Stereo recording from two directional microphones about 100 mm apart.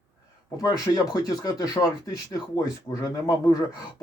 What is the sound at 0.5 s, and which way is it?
Speech, 40° left (ahead or behind).